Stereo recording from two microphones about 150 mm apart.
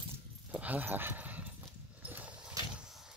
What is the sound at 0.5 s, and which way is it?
Speech, 10° right (ahead or behind).